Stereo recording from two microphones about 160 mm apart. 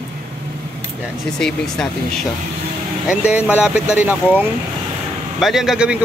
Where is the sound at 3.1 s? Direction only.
5° right (ahead or behind).